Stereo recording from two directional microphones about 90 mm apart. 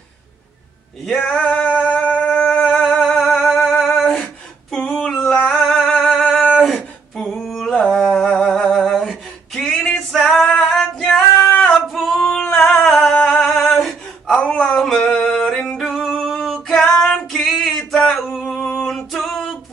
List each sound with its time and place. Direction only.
1.1 s male singing: 15° left (ahead or behind)
2.4 s a sound: 15° left (ahead or behind)
2.8 s music: 10° left (ahead or behind)
4.0 s a sound: 5° left (ahead or behind)
7.7 s humming: 10° left (ahead or behind)
10.8 s female singing: 10° left (ahead or behind)
11.9 s singing: 5° left (ahead or behind)
18.9 s music: 5° left (ahead or behind)